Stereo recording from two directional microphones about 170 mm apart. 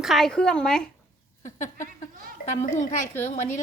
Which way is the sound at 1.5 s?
45° left (ahead or behind).